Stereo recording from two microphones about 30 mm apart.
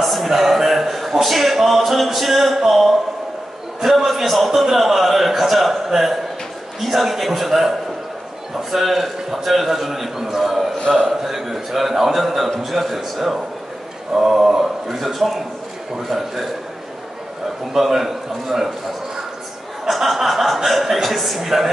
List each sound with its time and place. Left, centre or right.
0.0 s a sound: centre
2.1 s speech: centre
3.8 s a man's voice: centre
8.7 s a man's voice: centre
10.8 s a man's voice: left
11.1 s a man's voice: centre
15.0 s a man's voice: centre
17.7 s a man's voice: centre
19.9 s speech: centre